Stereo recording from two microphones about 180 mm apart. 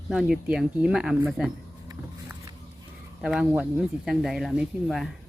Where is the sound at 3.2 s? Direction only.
5° right (ahead or behind).